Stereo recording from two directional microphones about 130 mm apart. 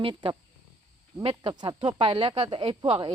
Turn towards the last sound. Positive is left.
turn(degrees=-40)  # may be behind; listen again after turning